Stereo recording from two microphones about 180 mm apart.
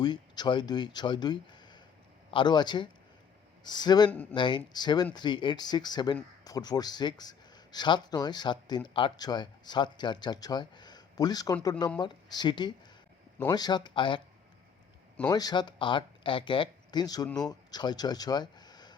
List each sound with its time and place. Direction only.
0.0 s speech: 25° left (ahead or behind)
4.1 s speech: 10° left (ahead or behind)
4.4 s speech: 25° left (ahead or behind)
15.3 s speech: 20° left (ahead or behind)
17.2 s speech: 5° left (ahead or behind)
17.5 s speech: 25° left (ahead or behind)